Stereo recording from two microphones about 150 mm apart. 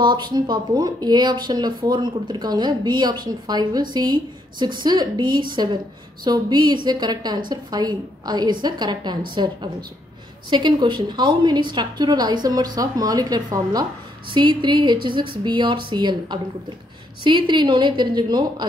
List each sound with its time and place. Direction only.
0.0 s a woman's voice: 30° right (ahead or behind)